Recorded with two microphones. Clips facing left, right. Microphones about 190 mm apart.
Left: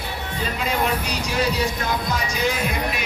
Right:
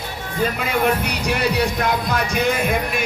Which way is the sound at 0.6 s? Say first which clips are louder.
Right 1 dB; 60° right (ahead or behind).